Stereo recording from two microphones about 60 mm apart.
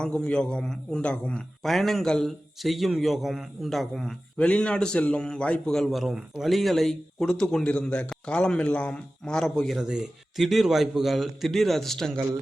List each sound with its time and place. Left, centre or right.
0.0 s a man's voice: centre
1.6 s a man's voice: centre
4.4 s a man's voice: centre
6.0 s a man's voice: centre
9.7 s a man's voice: centre